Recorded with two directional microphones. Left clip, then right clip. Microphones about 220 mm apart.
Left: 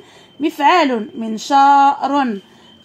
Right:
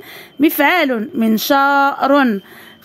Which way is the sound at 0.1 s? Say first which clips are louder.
Right 6 dB; 50° right (ahead or behind).